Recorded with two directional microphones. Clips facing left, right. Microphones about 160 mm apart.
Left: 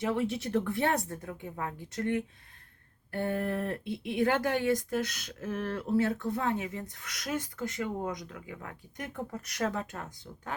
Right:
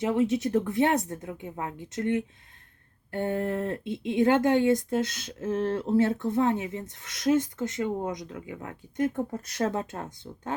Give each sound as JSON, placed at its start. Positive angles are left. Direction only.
{"t": 0.0, "sound": "speech", "side_deg": -20}